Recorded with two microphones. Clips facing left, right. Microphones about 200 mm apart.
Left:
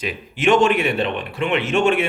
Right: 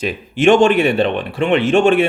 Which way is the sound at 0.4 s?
30° right (ahead or behind).